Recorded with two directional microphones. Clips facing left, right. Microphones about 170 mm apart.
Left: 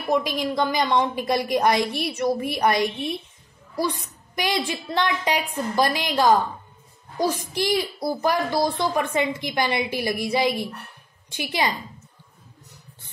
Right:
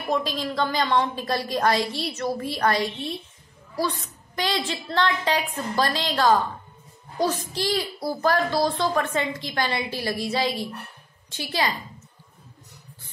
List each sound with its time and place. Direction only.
0.1 s a child's voice: 15° left (ahead or behind)